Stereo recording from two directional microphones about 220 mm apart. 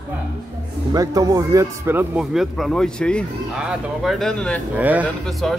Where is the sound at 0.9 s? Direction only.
15° right (ahead or behind); by 4.6 s 5° left (ahead or behind).